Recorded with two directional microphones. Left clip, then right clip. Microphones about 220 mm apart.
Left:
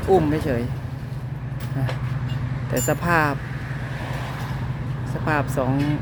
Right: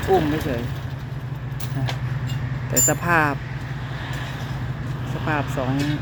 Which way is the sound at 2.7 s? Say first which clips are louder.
Right 1 dB; 5° left (ahead or behind).